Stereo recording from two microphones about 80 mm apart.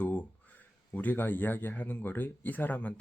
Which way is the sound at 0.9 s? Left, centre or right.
Left.